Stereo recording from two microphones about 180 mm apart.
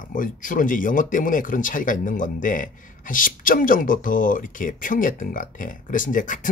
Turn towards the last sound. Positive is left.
turn(degrees=45)  # may be behind; listen again after turning